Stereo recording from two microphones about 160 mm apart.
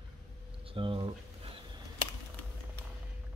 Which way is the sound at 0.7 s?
35° right (ahead or behind).